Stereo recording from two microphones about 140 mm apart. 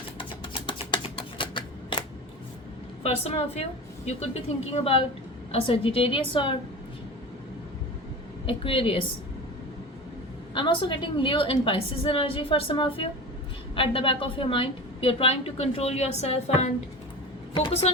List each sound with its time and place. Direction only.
0.2 s a sound: 35° left (ahead or behind)
1.4 s typewriter: 35° left (ahead or behind)
3.0 s a woman's voice: 45° left (ahead or behind)
8.4 s a woman's voice: 40° left (ahead or behind)
10.5 s a woman's voice: 35° left (ahead or behind)